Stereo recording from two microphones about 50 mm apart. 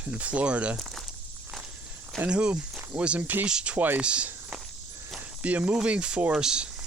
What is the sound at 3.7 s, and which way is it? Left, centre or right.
Speech, right.